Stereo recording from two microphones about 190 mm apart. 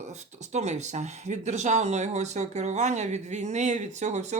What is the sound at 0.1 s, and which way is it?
Speech, 35° right (ahead or behind).